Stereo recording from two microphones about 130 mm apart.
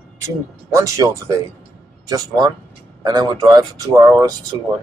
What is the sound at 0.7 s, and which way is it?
Speech, 25° right (ahead or behind).